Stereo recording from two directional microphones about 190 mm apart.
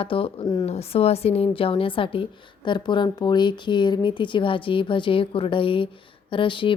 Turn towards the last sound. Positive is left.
turn(degrees=25)  # may be behind; listen again after turning